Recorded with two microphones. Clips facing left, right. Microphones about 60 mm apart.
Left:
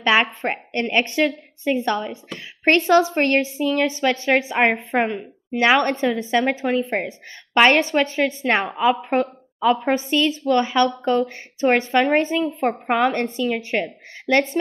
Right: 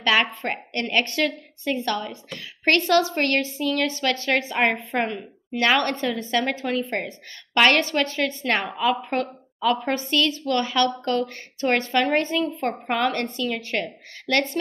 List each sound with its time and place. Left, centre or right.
0.0 s a woman's voice: centre